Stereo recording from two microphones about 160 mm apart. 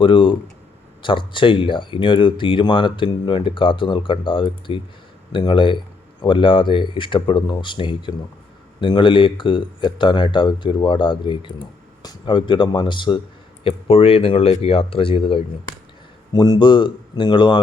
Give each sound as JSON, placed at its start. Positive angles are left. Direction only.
{"t": 0.0, "sound": "speech", "side_deg": 30}